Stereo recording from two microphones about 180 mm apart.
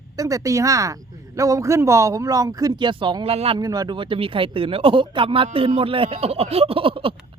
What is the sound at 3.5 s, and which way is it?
A woman's voice, 20° right (ahead or behind).